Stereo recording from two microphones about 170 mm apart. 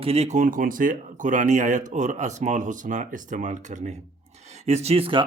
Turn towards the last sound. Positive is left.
turn(degrees=-30)  # may be behind; listen again after turning